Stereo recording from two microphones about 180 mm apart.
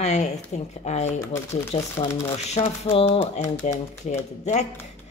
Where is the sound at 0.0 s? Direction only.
40° left (ahead or behind).